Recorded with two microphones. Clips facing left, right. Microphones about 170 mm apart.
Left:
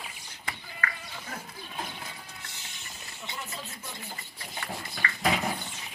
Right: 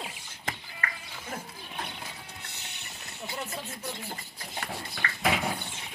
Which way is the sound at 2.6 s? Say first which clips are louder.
Right 1 dB; 65° right (ahead or behind).